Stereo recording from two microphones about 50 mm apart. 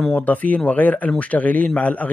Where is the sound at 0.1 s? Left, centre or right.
Left.